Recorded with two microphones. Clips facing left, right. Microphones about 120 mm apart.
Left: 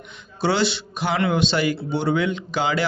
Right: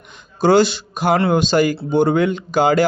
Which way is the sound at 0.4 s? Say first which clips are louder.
Right 8 dB; 45° right (ahead or behind).